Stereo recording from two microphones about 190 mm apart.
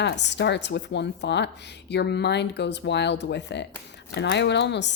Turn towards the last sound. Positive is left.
turn(degrees=65)  # may be behind; listen again after turning